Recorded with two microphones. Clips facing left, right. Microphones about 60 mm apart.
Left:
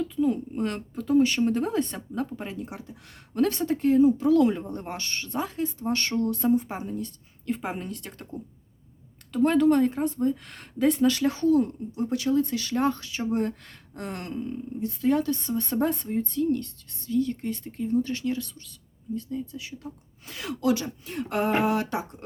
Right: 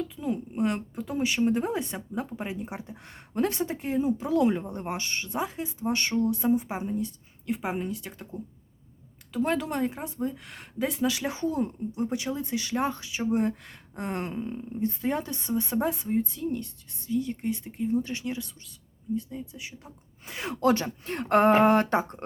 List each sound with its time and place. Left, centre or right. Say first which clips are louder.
0.2 s speech: left 4 dB; centre; by 3.2 s right
3.3 s a woman's voice: left 3 dB; centre
20.6 s speech: right 2 dB; right